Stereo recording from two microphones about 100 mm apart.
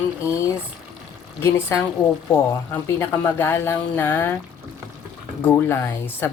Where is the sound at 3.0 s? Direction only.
25° left (ahead or behind).